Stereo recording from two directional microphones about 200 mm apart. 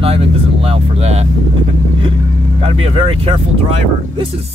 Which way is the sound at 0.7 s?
30° right (ahead or behind).